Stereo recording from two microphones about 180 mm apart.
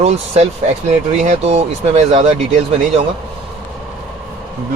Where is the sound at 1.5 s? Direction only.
35° right (ahead or behind).